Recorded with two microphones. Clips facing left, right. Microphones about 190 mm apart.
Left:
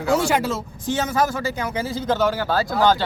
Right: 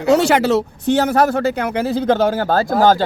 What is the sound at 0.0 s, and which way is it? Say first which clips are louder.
Speech: right 6 dB; 70° right (ahead or behind).